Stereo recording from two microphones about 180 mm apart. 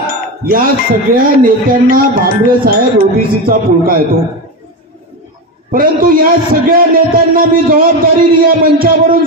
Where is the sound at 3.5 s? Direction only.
50° right (ahead or behind).